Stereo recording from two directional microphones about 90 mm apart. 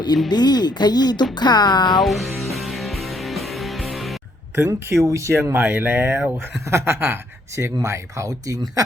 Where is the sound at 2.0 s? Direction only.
Centre (ahead or behind).